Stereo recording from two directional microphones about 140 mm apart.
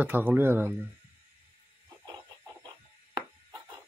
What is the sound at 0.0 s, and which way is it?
Speech, 10° right (ahead or behind).